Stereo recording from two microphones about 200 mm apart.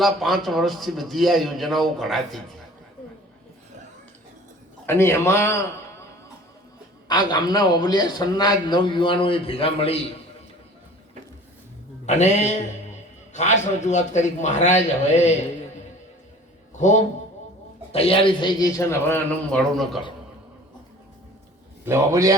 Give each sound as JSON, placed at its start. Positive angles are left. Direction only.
{"t": 0.0, "sound": "a man's voice", "side_deg": 0}
{"t": 4.9, "sound": "a man's voice", "side_deg": 15}
{"t": 7.1, "sound": "a man's voice", "side_deg": 20}
{"t": 12.0, "sound": "a man's voice", "side_deg": 35}
{"t": 16.7, "sound": "a man's voice", "side_deg": 35}
{"t": 21.8, "sound": "a man's voice", "side_deg": -15}